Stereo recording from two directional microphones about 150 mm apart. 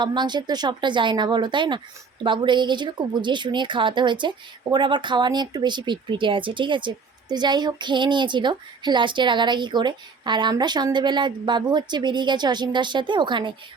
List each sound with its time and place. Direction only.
0.0 s a woman's voice: 30° right (ahead or behind)